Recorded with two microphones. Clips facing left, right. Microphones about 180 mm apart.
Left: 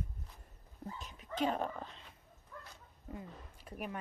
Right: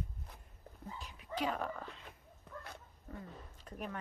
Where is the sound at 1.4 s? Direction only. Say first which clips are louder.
Left 3 dB; 25° left (ahead or behind).